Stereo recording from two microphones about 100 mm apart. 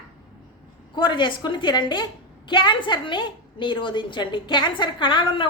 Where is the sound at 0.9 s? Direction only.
50° left (ahead or behind).